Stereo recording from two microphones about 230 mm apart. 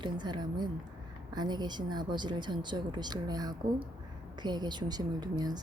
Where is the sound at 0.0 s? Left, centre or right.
Centre.